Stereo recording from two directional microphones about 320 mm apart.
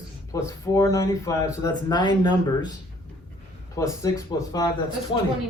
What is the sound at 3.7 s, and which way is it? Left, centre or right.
Speech, centre.